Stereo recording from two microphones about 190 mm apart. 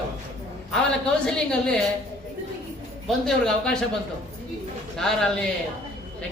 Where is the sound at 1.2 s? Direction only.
5° left (ahead or behind).